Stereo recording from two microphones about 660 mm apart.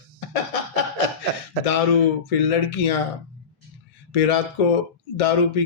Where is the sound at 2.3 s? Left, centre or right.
Left.